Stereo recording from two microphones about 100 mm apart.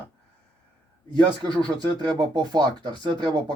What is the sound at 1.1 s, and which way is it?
Speech, 45° right (ahead or behind).